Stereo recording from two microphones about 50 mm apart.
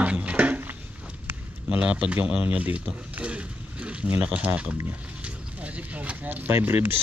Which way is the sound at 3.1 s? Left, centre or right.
Right.